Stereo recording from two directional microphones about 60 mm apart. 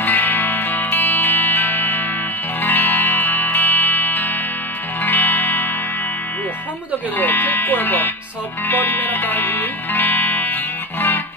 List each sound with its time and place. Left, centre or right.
0.0 s music: left
7.2 s music: left